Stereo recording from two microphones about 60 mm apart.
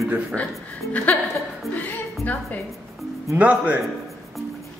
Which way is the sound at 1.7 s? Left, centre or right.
Left.